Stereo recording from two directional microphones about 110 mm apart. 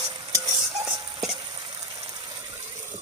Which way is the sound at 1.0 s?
35° right (ahead or behind).